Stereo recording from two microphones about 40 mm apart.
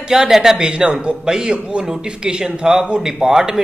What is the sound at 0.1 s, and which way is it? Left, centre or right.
Speech, centre.